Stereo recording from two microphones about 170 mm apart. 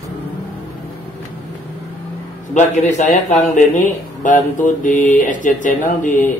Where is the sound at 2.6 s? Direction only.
40° left (ahead or behind).